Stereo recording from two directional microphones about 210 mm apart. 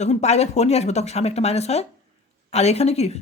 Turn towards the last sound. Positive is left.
turn(degrees=30)  # may be behind; listen again after turning